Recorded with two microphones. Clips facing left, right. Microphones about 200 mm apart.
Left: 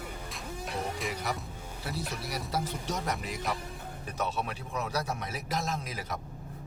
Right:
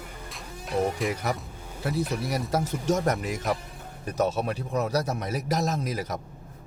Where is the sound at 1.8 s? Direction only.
45° right (ahead or behind).